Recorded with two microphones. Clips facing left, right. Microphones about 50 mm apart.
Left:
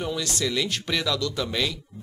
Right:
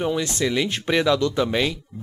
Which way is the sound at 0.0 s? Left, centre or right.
Right.